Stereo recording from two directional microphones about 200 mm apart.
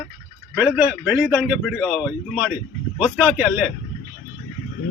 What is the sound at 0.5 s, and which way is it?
A man's voice, 10° right (ahead or behind).